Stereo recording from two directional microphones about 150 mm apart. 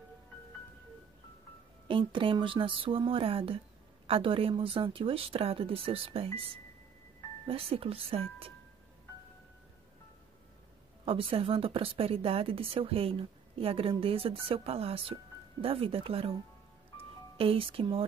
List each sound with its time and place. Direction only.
1.9 s speech: 35° right (ahead or behind)
11.1 s speech: 35° right (ahead or behind)
17.4 s speech: 40° right (ahead or behind)